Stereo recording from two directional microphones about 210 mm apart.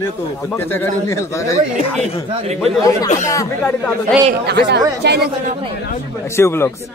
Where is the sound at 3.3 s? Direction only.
15° left (ahead or behind).